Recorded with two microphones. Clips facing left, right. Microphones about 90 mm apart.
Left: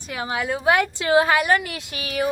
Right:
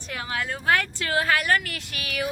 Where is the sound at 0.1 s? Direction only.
15° left (ahead or behind).